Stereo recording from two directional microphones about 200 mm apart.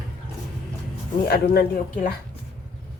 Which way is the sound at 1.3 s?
50° left (ahead or behind).